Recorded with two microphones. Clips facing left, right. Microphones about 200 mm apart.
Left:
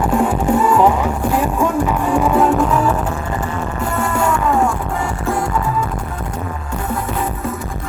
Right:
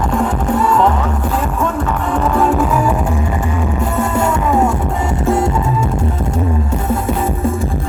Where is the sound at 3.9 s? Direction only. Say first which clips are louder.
Right 1 dB; 20° right (ahead or behind).